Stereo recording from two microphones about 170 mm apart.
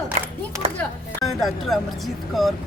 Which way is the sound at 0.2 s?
35° right (ahead or behind).